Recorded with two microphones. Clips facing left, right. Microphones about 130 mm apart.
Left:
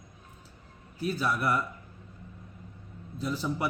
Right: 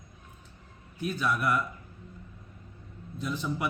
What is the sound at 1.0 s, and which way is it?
Speech, 35° left (ahead or behind).